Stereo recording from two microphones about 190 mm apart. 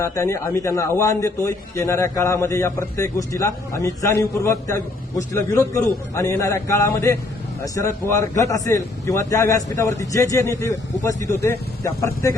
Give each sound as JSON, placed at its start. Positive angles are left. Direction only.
{"t": 0.0, "sound": "a man's voice", "side_deg": 15}